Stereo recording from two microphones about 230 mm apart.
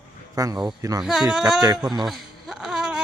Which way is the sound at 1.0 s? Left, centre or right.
Centre.